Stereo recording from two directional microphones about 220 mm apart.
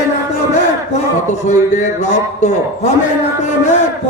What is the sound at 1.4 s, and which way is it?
Speech, 30° left (ahead or behind).